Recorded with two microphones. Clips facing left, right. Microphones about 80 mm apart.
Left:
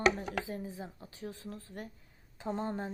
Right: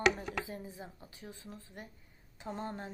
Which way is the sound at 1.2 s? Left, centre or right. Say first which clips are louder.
Left 6 dB; left.